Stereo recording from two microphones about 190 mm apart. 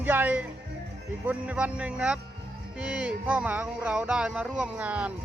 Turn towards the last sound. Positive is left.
turn(degrees=-5)  # may be behind; listen again after turning